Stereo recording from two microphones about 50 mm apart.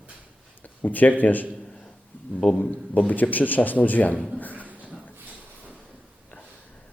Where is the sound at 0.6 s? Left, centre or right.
Left.